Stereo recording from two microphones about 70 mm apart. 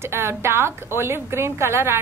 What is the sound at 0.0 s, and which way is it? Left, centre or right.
A woman's voice, right.